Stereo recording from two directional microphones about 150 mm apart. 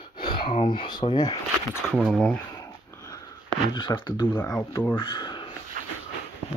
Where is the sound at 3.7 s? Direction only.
35° left (ahead or behind).